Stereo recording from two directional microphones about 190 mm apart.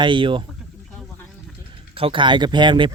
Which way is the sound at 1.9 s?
25° right (ahead or behind).